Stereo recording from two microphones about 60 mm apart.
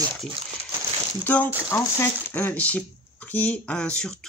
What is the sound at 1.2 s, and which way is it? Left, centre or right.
Speech, left.